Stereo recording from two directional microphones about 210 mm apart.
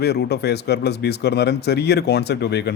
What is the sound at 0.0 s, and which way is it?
Speech, 50° left (ahead or behind).